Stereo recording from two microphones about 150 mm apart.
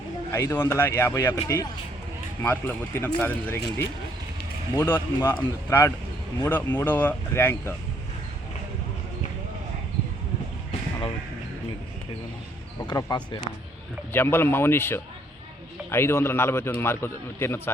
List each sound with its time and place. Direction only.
0.3 s a man's voice: 15° left (ahead or behind)
12.8 s speech: 25° left (ahead or behind)
14.1 s a man's voice: 15° left (ahead or behind)